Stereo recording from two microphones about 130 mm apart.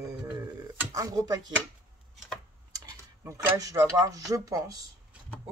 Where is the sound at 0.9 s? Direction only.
25° right (ahead or behind).